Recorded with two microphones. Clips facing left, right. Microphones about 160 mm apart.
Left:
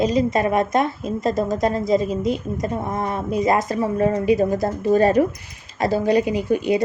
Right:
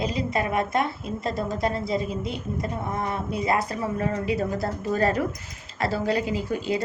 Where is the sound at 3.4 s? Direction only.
45° left (ahead or behind).